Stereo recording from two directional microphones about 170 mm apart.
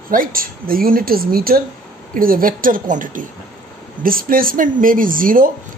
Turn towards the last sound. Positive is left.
turn(degrees=-55)  # may be behind; listen again after turning